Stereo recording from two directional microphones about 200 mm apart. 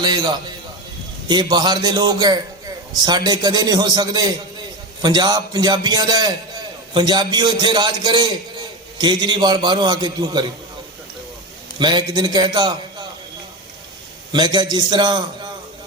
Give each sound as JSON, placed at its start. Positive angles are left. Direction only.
{"t": 0.0, "sound": "a man's voice", "side_deg": -20}
{"t": 11.8, "sound": "a man's voice", "side_deg": -20}
{"t": 14.3, "sound": "a man's voice", "side_deg": -20}